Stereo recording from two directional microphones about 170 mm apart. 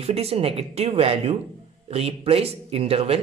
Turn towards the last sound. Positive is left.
turn(degrees=-35)  # may be behind; listen again after turning